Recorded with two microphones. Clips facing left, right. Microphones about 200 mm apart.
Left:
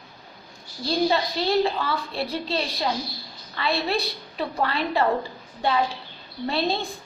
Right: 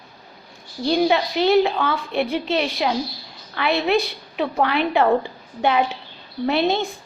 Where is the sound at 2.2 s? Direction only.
35° left (ahead or behind).